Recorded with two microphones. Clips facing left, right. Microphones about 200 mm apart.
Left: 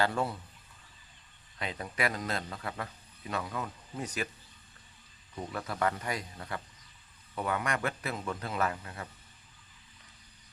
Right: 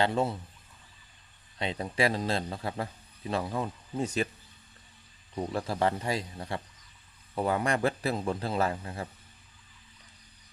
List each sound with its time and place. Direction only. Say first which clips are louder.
0.0 s a man's voice: right 3 dB; 25° right (ahead or behind)
1.5 s a man's voice: right 5 dB; 25° right (ahead or behind)
5.3 s a man's voice: right 6 dB; 30° right (ahead or behind)